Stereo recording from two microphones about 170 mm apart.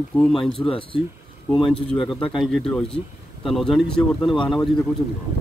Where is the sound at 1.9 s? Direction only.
Centre (ahead or behind).